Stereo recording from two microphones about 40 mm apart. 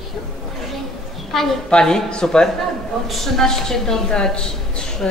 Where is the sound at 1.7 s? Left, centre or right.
Centre.